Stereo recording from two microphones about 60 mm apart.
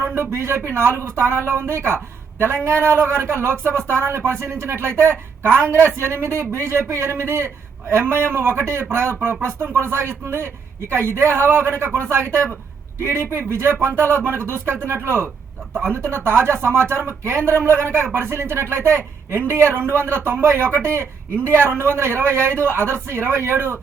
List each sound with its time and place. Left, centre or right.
0.0 s speech: right